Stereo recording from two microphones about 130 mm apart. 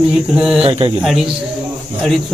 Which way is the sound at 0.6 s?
45° right (ahead or behind).